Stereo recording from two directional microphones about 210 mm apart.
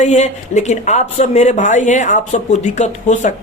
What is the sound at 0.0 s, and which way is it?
Speech, 30° left (ahead or behind).